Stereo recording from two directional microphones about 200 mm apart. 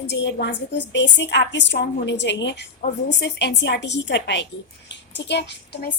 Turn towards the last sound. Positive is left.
turn(degrees=55)  # may be behind; listen again after turning